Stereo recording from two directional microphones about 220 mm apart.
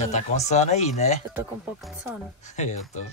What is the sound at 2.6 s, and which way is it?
Speech, 30° left (ahead or behind).